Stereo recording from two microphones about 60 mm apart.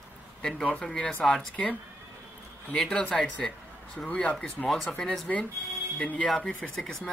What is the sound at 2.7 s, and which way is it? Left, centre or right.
Speech, centre.